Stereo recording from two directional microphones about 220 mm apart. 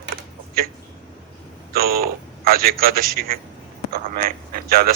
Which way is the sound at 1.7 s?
45° right (ahead or behind).